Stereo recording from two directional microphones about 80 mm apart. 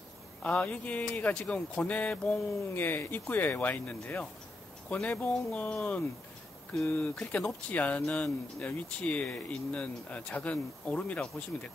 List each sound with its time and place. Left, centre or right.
0.4 s speech: centre